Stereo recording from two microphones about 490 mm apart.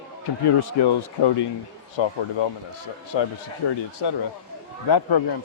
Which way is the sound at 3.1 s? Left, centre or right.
Left.